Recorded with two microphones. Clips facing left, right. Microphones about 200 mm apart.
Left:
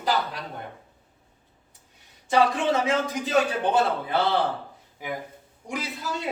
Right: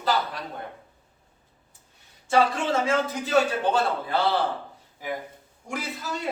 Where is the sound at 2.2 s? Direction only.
20° left (ahead or behind).